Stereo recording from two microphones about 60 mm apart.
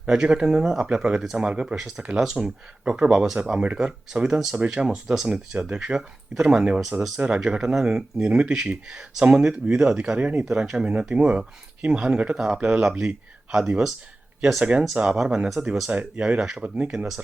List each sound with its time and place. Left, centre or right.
0.0 s speech: centre
10.4 s speech: centre
14.6 s speech: right
15.6 s speech: right